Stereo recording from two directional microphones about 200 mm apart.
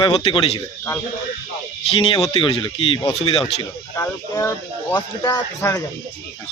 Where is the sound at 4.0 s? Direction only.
15° left (ahead or behind).